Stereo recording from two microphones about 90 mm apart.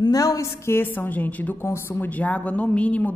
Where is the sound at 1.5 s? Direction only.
30° left (ahead or behind).